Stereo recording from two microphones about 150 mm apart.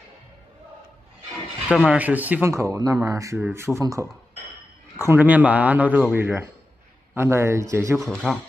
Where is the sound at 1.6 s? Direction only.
5° right (ahead or behind).